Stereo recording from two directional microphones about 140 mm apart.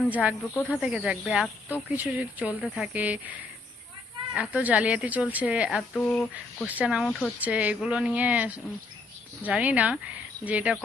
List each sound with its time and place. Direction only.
0.1 s speech: 10° right (ahead or behind)
4.4 s speech: 10° right (ahead or behind)
6.0 s speech: 5° left (ahead or behind)
6.7 s speech: 10° right (ahead or behind)
7.4 s speech: 10° right (ahead or behind)